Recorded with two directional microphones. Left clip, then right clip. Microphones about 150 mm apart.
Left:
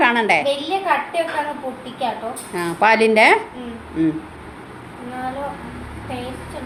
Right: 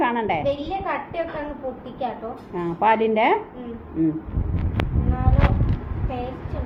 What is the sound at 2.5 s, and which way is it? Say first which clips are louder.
Speech: left 4 dB; 30° left (ahead or behind).